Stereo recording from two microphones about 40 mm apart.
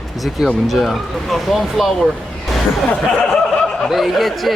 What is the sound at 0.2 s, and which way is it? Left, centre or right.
Speech, centre.